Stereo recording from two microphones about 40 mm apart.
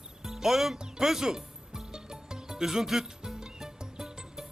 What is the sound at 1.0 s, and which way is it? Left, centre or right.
Music, centre.